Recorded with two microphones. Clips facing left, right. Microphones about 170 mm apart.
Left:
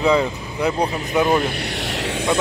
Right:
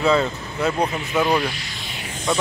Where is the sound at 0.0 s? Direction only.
15° left (ahead or behind).